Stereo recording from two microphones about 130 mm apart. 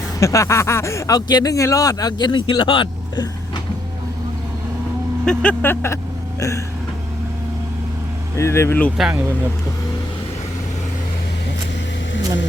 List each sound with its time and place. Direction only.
0.2 s speech: 25° left (ahead or behind)
5.2 s speech: 5° left (ahead or behind)
8.4 s speech: 20° left (ahead or behind)
9.0 s speech: centre (ahead or behind)